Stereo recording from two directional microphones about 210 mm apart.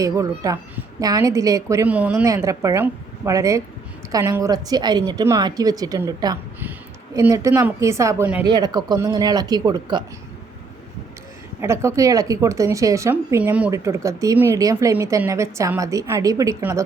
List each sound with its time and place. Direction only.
0.0 s a woman's voice: 15° right (ahead or behind)
11.6 s a woman's voice: 15° right (ahead or behind)